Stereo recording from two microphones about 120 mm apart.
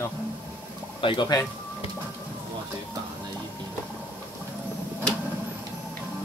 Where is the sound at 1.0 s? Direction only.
40° left (ahead or behind).